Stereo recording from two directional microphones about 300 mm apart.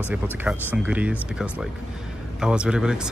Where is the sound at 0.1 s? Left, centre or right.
Centre.